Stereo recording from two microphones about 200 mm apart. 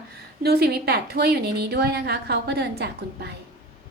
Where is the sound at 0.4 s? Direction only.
50° right (ahead or behind).